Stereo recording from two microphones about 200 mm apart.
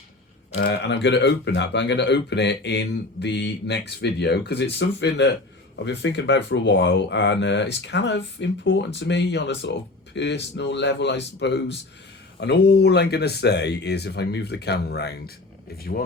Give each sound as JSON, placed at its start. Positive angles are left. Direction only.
{"t": 0.5, "sound": "speech", "side_deg": 60}